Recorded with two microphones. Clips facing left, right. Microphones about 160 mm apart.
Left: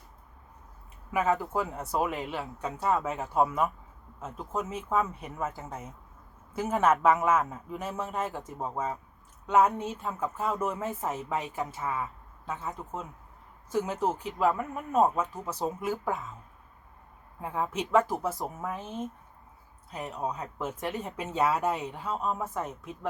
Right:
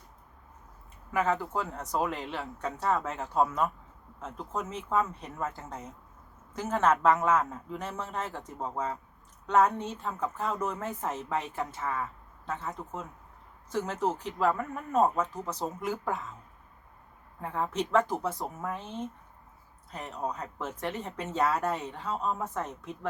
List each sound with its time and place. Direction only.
1.1 s speech: 10° left (ahead or behind)
17.4 s speech: 10° left (ahead or behind)
20.1 s speech: 10° left (ahead or behind)